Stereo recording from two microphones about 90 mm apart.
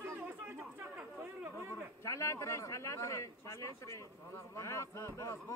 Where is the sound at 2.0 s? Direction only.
35° left (ahead or behind).